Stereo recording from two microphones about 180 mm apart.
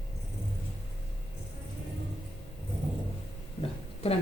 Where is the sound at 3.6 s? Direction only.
35° left (ahead or behind).